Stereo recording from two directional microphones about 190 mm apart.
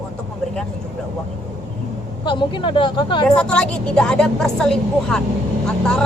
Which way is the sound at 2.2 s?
25° left (ahead or behind).